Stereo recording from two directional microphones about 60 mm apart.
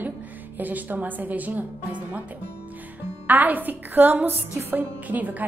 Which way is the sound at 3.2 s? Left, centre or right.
Right.